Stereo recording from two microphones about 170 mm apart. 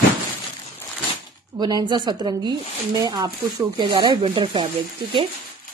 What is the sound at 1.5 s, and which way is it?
Speech, 25° right (ahead or behind).